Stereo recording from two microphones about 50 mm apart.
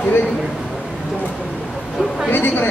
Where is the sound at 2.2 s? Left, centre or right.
Left.